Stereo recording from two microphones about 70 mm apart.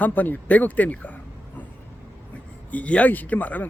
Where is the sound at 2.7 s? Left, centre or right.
Centre.